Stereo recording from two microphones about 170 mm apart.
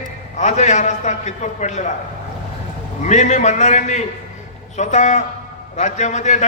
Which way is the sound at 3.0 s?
45° left (ahead or behind).